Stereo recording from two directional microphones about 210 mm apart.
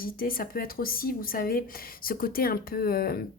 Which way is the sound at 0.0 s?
45° left (ahead or behind).